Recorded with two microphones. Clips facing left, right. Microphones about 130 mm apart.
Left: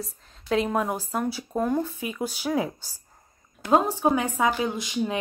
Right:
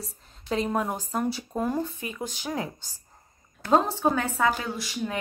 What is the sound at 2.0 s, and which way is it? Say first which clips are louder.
Speech: left 4 dB; 10° left (ahead or behind).